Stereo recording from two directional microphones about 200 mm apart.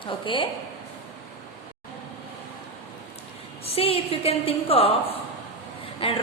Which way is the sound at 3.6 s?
30° left (ahead or behind).